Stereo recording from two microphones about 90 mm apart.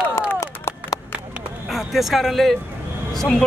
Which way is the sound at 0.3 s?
30° left (ahead or behind).